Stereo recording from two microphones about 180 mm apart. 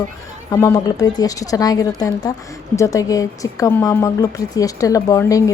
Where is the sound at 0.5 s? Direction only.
20° left (ahead or behind).